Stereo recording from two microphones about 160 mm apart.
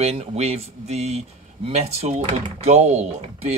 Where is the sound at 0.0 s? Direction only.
40° right (ahead or behind).